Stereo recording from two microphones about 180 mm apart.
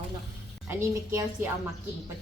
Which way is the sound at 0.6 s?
15° right (ahead or behind).